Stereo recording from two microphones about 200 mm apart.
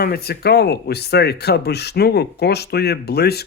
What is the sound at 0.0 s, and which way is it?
Speech, 50° left (ahead or behind).